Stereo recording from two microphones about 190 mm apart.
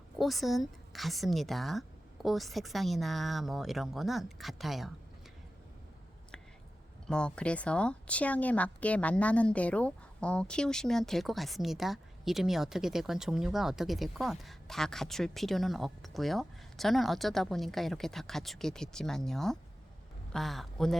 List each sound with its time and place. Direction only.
0.2 s a woman's voice: centre (ahead or behind)
7.1 s a woman's voice: 5° left (ahead or behind)